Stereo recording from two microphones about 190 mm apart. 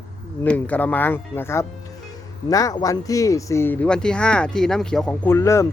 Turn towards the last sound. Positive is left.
turn(degrees=15)  # may be behind; listen again after turning